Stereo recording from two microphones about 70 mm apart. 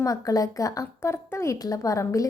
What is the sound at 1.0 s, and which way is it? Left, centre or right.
A woman's voice, left.